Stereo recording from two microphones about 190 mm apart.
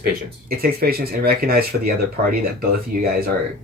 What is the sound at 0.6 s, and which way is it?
Speech, 55° right (ahead or behind).